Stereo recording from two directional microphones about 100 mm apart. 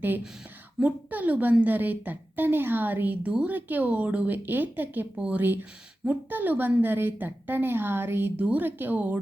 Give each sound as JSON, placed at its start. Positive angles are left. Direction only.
{"t": 0.8, "sound": "a woman's voice", "side_deg": -15}